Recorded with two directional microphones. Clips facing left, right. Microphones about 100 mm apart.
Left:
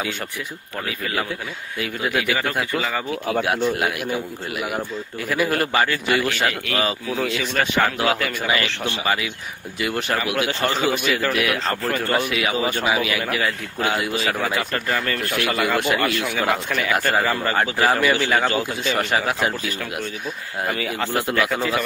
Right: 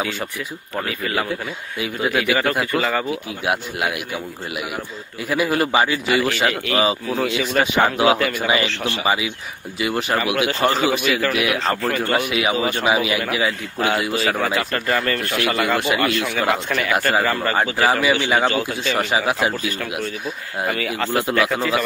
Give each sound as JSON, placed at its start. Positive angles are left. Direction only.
{"t": 2.0, "sound": "speech", "side_deg": 0}
{"t": 5.3, "sound": "speech", "side_deg": -10}
{"t": 12.3, "sound": "a man's voice", "side_deg": -20}
{"t": 13.3, "sound": "speech", "side_deg": -5}
{"t": 18.7, "sound": "speech", "side_deg": 0}